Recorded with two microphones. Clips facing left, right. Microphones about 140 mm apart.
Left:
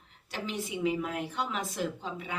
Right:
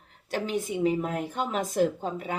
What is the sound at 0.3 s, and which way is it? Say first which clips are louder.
Speech: right 7 dB; 45° right (ahead or behind).